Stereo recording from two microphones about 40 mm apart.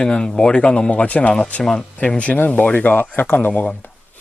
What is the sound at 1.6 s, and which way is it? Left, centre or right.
Speech, centre.